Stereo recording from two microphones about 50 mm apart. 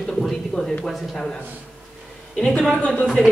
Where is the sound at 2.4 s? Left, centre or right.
Centre.